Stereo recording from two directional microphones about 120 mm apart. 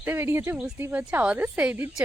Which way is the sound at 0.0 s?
15° right (ahead or behind).